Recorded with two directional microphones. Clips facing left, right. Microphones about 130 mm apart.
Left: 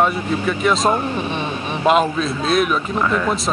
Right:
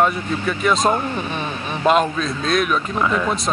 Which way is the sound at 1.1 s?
30° left (ahead or behind).